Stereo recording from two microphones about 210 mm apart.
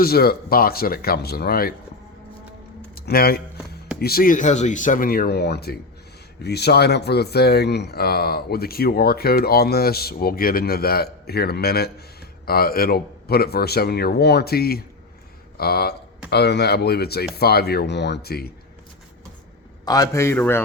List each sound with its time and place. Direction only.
0.0 s speech: 45° left (ahead or behind)
2.9 s speech: 45° left (ahead or behind)
19.8 s a man's voice: 20° left (ahead or behind)